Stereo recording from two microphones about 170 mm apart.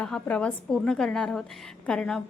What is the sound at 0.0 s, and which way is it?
A woman's voice, 5° left (ahead or behind).